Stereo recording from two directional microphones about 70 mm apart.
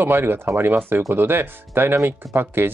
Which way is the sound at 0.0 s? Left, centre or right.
Right.